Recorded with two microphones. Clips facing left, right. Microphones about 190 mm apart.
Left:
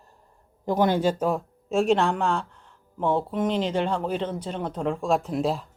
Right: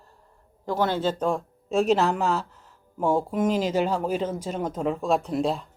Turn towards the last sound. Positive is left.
turn(degrees=0)  # may be behind; listen again after turning